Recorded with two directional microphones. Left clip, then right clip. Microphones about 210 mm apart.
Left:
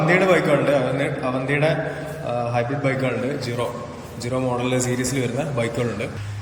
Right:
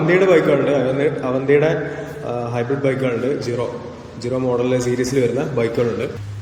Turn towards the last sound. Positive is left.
turn(degrees=-10)  # may be behind; listen again after turning